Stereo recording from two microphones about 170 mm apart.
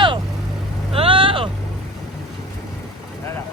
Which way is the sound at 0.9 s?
30° right (ahead or behind).